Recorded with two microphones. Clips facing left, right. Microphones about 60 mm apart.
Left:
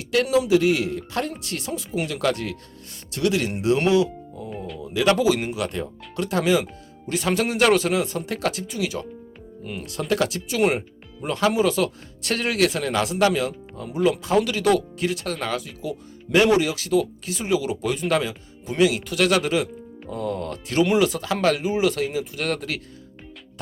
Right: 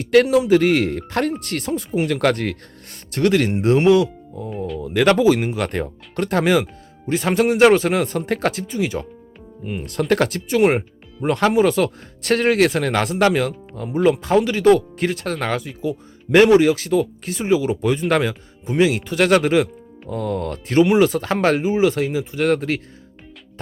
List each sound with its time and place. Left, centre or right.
0.0 s speech: right
4.4 s speech: centre
4.8 s speech: right
9.8 s speech: right